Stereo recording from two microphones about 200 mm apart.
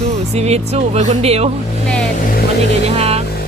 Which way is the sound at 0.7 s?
35° right (ahead or behind).